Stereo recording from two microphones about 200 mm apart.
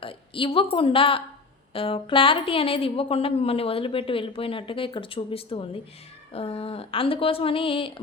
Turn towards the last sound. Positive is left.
turn(degrees=25)  # may be behind; listen again after turning